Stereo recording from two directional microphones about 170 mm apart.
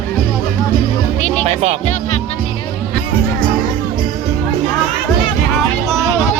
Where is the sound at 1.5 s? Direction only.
40° right (ahead or behind).